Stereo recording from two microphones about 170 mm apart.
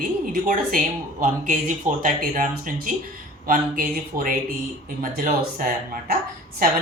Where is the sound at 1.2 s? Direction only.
50° right (ahead or behind).